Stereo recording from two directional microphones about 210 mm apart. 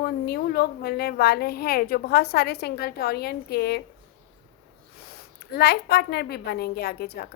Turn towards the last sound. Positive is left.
turn(degrees=50)  # may be behind; listen again after turning